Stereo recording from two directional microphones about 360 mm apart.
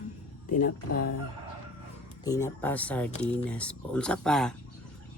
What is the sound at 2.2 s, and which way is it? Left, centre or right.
Speech, centre.